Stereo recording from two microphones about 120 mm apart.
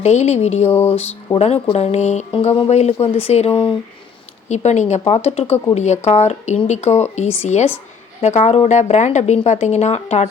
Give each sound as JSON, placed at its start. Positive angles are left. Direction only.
{"t": 0.0, "sound": "a woman's voice", "side_deg": 65}
{"t": 0.7, "sound": "a sound", "side_deg": 20}
{"t": 1.4, "sound": "speech", "side_deg": 55}
{"t": 2.3, "sound": "speech", "side_deg": 55}
{"t": 4.4, "sound": "a woman's voice", "side_deg": 70}